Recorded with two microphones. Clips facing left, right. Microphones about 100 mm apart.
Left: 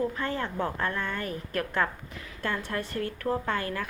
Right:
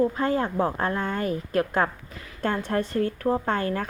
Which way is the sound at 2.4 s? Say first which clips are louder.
Right 5 dB; 45° right (ahead or behind).